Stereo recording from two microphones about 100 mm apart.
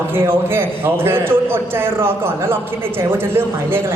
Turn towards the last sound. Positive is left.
turn(degrees=-20)  # may be behind; listen again after turning